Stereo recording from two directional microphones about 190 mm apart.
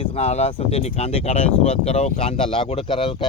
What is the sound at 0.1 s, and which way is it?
Speech, 35° left (ahead or behind).